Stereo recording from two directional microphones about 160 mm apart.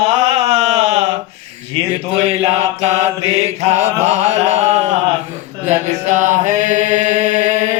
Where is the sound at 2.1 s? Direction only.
40° right (ahead or behind).